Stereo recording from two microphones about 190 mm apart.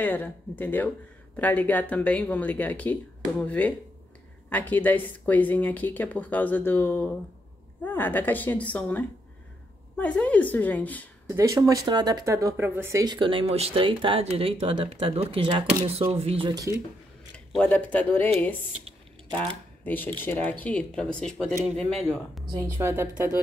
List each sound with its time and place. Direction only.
0.0 s speech: 10° left (ahead or behind)
11.2 s speech: 15° right (ahead or behind)
17.5 s speech: 5° left (ahead or behind)
19.8 s speech: 10° left (ahead or behind)
22.5 s speech: 15° right (ahead or behind)